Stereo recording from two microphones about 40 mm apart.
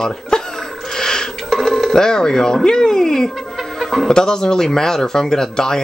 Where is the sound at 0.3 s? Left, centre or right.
Centre.